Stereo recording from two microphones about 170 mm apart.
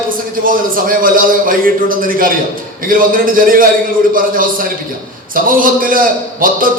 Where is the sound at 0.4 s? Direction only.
55° right (ahead or behind).